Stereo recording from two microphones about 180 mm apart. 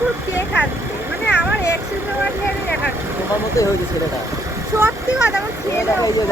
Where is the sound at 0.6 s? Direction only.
10° right (ahead or behind).